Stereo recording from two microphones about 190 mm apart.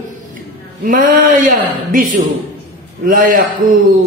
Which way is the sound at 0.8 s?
45° right (ahead or behind).